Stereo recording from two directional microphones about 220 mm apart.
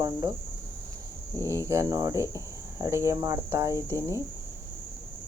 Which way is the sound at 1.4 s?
15° right (ahead or behind).